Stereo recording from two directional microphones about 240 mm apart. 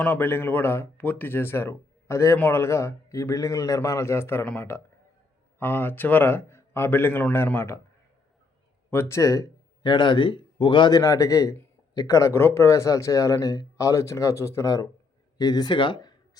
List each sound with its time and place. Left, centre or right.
0.0 s speech: centre
8.9 s speech: centre